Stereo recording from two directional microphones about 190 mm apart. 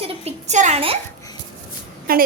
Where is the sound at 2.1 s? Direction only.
50° right (ahead or behind).